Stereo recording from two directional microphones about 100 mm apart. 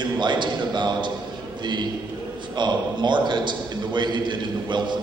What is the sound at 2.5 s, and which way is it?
A man's voice, 50° right (ahead or behind).